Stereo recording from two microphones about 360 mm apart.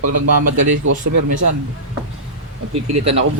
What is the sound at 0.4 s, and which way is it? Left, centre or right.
Speech, right.